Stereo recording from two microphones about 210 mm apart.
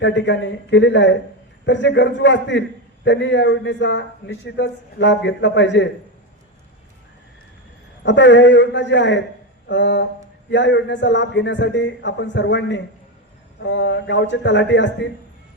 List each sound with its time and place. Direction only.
0.0 s a man's voice: 55° left (ahead or behind)
8.0 s a man's voice: 55° left (ahead or behind)